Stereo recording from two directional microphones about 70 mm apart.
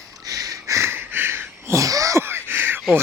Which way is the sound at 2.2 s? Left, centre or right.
Right.